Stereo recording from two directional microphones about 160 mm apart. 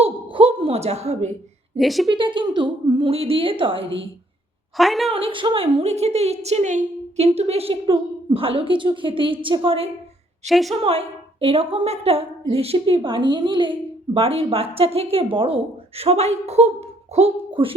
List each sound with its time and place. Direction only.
0.0 s a sound: 35° right (ahead or behind)
1.8 s a woman's voice: centre (ahead or behind)
2.0 s a woman's voice: 30° right (ahead or behind)
4.8 s a woman's voice: centre (ahead or behind)
5.1 s a woman's voice: 35° right (ahead or behind)
10.4 s a woman's voice: centre (ahead or behind)
10.8 s a woman's voice: 35° right (ahead or behind)